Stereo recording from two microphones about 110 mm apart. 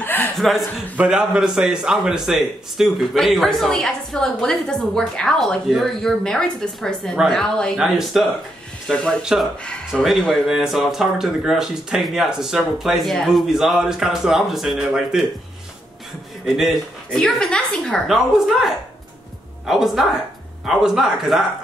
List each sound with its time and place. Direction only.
0.0 s chuckle: 15° left (ahead or behind)
0.4 s a man's voice: centre (ahead or behind)
9.2 s a man's voice: 5° right (ahead or behind)
16.4 s a man's voice: 5° right (ahead or behind)